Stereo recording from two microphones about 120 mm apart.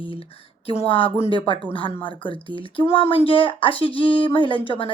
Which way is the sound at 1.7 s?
40° left (ahead or behind).